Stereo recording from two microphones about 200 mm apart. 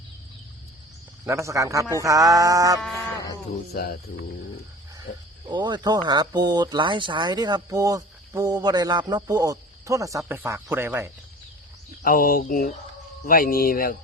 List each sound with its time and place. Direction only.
1.2 s speech: 15° right (ahead or behind)
3.7 s speech: 50° left (ahead or behind)
5.5 s speech: 20° right (ahead or behind)
12.0 s speech: 45° left (ahead or behind)